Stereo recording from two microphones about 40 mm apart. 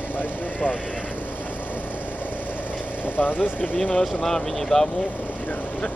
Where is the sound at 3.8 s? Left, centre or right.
Centre.